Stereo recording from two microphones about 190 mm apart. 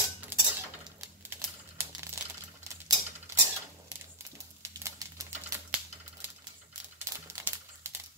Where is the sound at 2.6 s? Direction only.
15° right (ahead or behind).